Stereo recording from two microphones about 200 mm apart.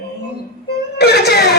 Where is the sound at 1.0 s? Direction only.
55° left (ahead or behind).